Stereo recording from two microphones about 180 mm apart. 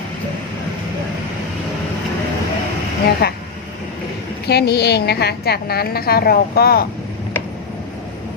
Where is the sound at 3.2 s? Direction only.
60° left (ahead or behind).